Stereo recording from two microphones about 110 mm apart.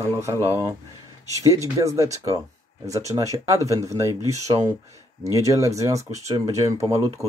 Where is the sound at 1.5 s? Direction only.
30° right (ahead or behind).